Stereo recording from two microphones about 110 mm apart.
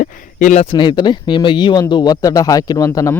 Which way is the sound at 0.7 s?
40° left (ahead or behind).